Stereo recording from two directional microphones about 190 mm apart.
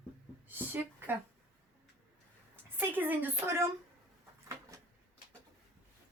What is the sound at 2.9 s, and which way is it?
Speech, 10° right (ahead or behind).